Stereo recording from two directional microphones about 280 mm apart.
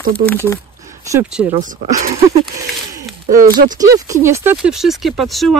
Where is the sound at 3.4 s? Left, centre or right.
Right.